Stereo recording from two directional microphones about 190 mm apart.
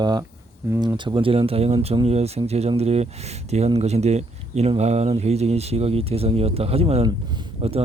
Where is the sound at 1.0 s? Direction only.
25° right (ahead or behind).